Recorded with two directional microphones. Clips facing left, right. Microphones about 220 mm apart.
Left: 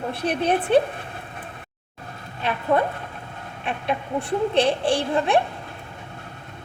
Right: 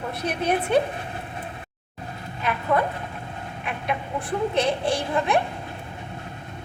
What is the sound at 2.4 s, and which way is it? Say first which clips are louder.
Speech: left 1 dB; 30° left (ahead or behind).